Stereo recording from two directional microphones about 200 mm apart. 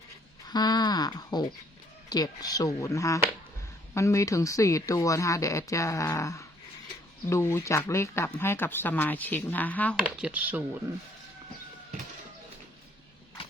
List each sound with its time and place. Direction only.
0.4 s a sound: 20° left (ahead or behind)
2.0 s speech: 20° left (ahead or behind)
10.0 s speech: 5° right (ahead or behind)